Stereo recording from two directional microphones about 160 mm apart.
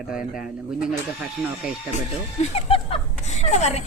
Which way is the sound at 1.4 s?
Centre (ahead or behind).